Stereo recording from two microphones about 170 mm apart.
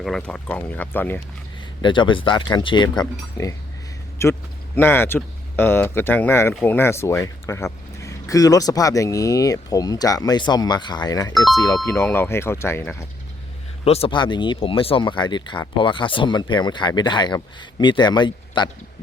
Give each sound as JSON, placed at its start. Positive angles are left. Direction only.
{"t": 0.0, "sound": "speech", "side_deg": 5}
{"t": 1.8, "sound": "speech", "side_deg": 30}
{"t": 11.3, "sound": "speech", "side_deg": 0}
{"t": 11.6, "sound": "speech", "side_deg": 15}
{"t": 13.8, "sound": "speech", "side_deg": 35}